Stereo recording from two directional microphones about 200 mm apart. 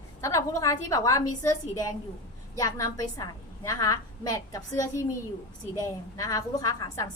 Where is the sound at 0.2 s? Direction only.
15° left (ahead or behind).